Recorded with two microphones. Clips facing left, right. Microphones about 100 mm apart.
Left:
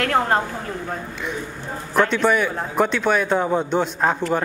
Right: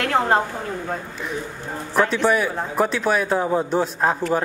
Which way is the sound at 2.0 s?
5° right (ahead or behind).